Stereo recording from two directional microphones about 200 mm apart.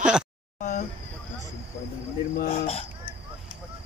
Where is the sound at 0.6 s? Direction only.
40° left (ahead or behind).